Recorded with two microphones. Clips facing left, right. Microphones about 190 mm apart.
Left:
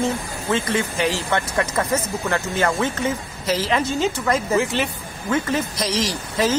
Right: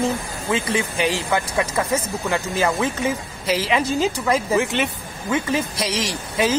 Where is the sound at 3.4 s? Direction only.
30° left (ahead or behind).